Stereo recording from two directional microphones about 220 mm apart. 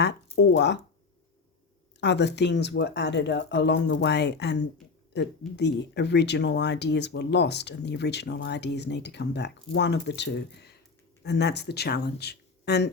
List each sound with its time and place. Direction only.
0.0 s speech: 50° left (ahead or behind)
2.0 s speech: 50° left (ahead or behind)